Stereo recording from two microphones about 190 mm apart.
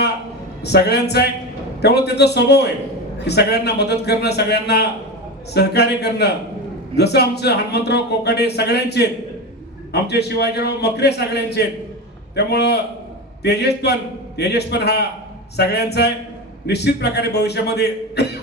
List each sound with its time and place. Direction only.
0.6 s a man's voice: 60° left (ahead or behind)